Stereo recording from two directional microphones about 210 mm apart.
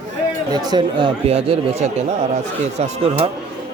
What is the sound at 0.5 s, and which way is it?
Speech, 20° right (ahead or behind).